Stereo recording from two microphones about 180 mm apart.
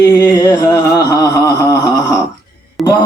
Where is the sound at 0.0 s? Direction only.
20° left (ahead or behind).